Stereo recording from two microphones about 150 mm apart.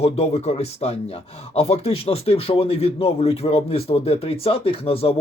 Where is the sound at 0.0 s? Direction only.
40° left (ahead or behind).